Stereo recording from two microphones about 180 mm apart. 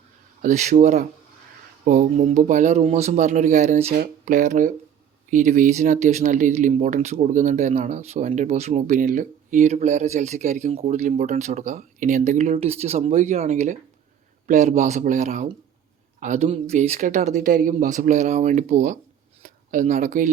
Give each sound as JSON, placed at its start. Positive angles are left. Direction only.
{"t": 0.4, "sound": "speech", "side_deg": -40}
{"t": 3.9, "sound": "speech", "side_deg": -50}